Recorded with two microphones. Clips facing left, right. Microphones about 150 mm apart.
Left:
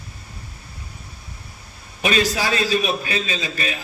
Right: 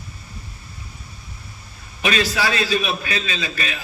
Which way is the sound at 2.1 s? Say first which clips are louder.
Left 1 dB; 35° left (ahead or behind).